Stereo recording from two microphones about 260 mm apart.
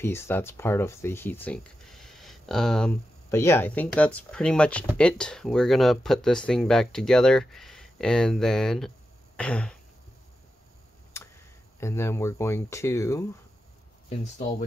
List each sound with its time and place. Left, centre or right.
0.0 s speech: centre
11.1 s tick: centre
11.8 s speech: centre
14.0 s speech: left